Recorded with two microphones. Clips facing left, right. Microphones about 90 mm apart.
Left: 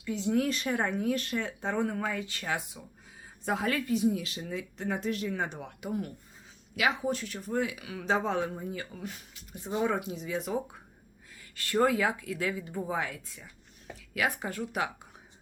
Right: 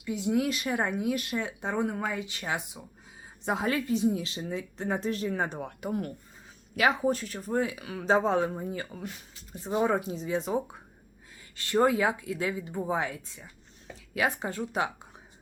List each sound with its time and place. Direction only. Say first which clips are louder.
0.0 s speech: right 1 dB; 15° right (ahead or behind)